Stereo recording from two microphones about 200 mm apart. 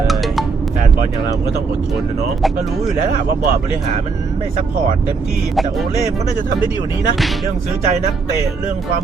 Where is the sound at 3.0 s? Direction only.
45° right (ahead or behind).